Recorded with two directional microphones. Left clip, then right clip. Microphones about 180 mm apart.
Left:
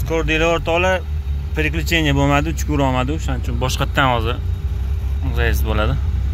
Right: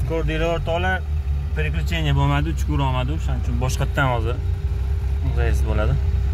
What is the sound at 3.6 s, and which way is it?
Speech, centre (ahead or behind).